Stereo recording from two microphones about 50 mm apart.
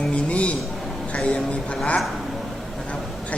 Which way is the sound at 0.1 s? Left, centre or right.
Left.